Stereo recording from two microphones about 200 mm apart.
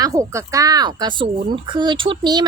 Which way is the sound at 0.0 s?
15° right (ahead or behind).